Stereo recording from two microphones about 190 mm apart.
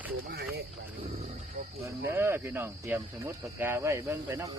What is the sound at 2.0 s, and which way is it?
Speech, 10° right (ahead or behind).